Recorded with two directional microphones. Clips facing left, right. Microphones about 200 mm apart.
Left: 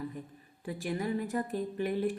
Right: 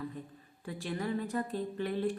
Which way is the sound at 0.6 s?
15° left (ahead or behind).